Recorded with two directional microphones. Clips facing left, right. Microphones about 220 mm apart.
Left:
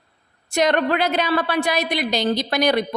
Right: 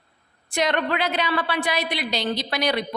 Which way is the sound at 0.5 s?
45° left (ahead or behind).